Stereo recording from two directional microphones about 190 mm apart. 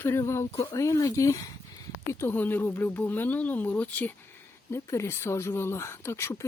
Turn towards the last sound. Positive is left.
turn(degrees=15)  # may be behind; listen again after turning